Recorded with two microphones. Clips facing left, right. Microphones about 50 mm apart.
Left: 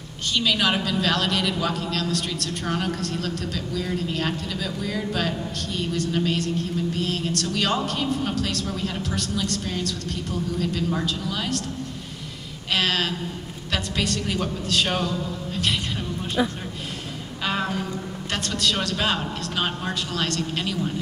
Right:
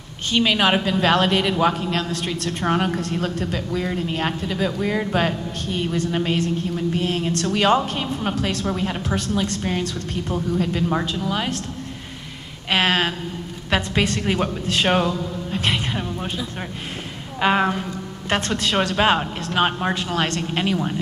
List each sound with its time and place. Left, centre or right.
0.3 s a woman's voice: right
12.7 s a sound: right
13.7 s a woman's voice: right
17.4 s a woman's voice: right